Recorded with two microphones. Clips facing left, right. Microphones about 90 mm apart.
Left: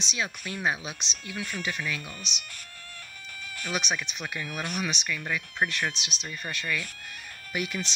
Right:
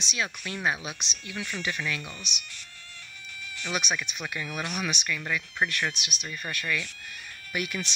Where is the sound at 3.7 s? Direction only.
35° left (ahead or behind).